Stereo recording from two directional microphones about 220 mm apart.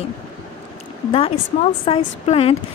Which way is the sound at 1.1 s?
25° left (ahead or behind).